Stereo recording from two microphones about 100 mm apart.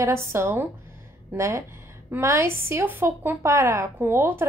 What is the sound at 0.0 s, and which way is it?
A woman's voice, 25° right (ahead or behind).